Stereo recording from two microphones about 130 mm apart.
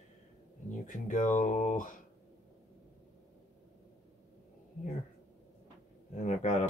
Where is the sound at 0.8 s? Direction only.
80° left.